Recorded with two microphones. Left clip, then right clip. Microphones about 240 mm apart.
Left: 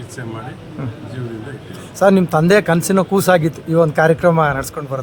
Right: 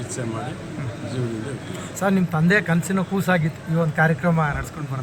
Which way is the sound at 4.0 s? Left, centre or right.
Left.